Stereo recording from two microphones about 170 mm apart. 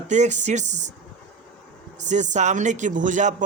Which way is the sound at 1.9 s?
45° right (ahead or behind).